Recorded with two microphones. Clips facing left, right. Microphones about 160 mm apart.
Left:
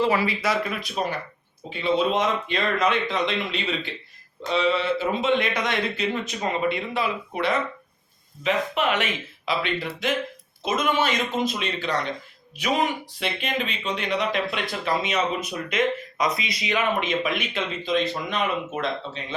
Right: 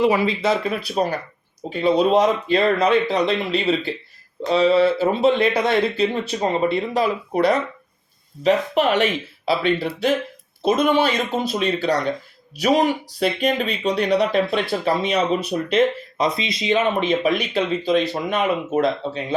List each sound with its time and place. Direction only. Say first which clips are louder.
0.0 s speech: right 4 dB; 20° right (ahead or behind)
0.7 s speech: right 6 dB; 35° right (ahead or behind)